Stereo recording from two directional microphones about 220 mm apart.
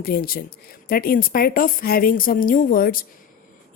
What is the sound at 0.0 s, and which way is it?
A woman's voice, 45° left (ahead or behind).